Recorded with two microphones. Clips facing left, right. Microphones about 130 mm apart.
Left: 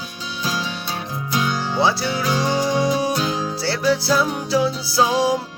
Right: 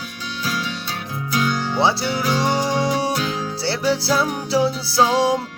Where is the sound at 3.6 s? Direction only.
25° right (ahead or behind).